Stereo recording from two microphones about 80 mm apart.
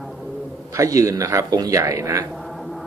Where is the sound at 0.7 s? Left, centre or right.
Right.